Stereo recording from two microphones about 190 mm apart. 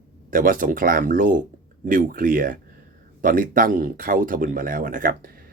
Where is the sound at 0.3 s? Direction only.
45° right (ahead or behind).